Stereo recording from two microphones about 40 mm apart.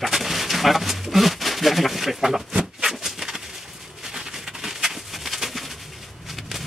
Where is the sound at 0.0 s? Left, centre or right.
Centre.